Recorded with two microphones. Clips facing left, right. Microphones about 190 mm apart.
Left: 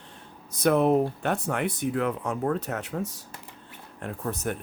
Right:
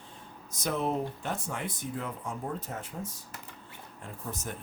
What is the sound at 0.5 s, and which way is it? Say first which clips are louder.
Speech: left 10 dB; 60° left (ahead or behind).